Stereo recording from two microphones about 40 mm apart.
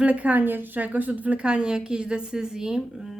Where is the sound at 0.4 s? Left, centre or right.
Right.